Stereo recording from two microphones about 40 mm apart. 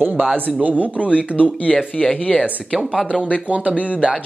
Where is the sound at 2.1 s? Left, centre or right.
Left.